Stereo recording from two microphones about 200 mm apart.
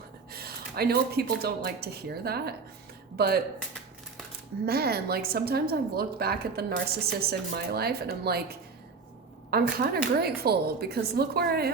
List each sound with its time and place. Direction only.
0.3 s a woman's voice: 50° right (ahead or behind)
4.6 s a woman's voice: 50° right (ahead or behind)